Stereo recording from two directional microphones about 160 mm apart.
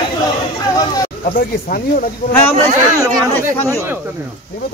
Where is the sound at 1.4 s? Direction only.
60° left (ahead or behind).